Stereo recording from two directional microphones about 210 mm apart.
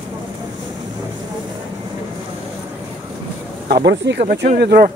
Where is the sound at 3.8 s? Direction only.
55° right (ahead or behind).